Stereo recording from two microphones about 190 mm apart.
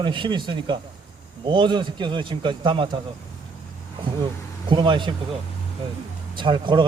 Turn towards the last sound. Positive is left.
turn(degrees=-25)  # may be behind; listen again after turning